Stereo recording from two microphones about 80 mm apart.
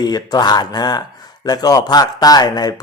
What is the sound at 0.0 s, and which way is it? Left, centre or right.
A man's voice, left.